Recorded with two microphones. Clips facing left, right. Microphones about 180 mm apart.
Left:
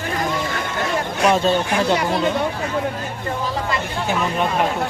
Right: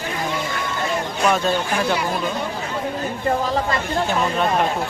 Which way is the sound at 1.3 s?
25° left (ahead or behind).